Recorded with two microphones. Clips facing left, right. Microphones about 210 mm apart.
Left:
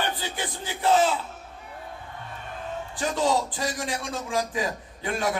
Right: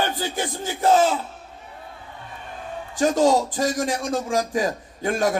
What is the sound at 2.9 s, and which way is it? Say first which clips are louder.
A man's voice: right 7 dB; 45° right (ahead or behind).